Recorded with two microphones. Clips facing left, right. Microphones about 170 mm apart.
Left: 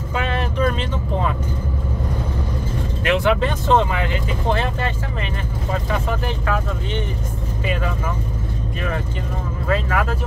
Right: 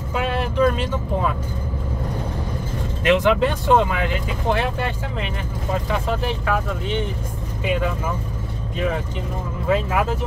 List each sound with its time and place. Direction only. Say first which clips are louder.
0.1 s vehicle: right 1 dB; 10° right (ahead or behind)
3.2 s speech: right 1 dB; 10° right (ahead or behind)
9.7 s speech: right 1 dB; 15° right (ahead or behind)